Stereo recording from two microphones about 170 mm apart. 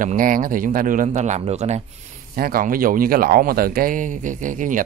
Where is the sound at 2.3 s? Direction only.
60° right (ahead or behind).